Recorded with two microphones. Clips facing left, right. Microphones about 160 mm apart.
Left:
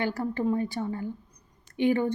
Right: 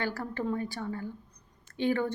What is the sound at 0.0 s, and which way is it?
A woman's voice, 20° left (ahead or behind).